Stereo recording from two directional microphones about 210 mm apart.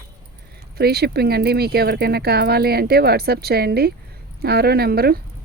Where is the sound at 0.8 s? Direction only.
50° right (ahead or behind).